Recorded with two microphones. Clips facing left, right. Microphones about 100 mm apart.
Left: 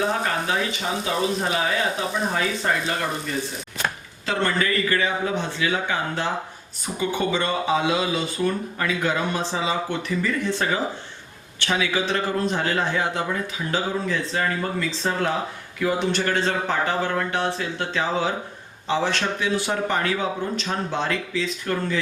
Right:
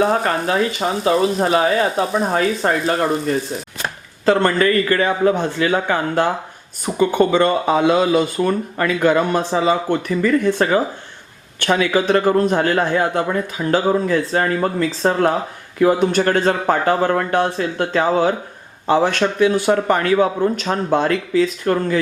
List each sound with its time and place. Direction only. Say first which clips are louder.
0.0 s a man's voice: right 7 dB; 45° right (ahead or behind)
4.3 s a man's voice: right 8 dB; 50° right (ahead or behind)